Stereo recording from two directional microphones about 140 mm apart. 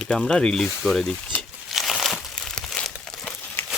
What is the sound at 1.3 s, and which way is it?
Crumpling, 10° left (ahead or behind).